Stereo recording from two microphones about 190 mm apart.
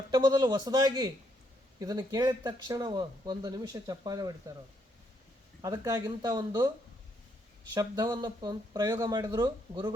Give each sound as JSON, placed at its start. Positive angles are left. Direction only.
{"t": 0.1, "sound": "speech", "side_deg": -20}
{"t": 5.6, "sound": "speech", "side_deg": -20}
{"t": 7.7, "sound": "speech", "side_deg": -20}